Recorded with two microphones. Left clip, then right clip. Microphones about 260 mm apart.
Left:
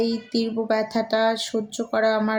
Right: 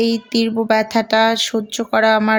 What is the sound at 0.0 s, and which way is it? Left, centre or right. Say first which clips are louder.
Speech: right 6 dB; right.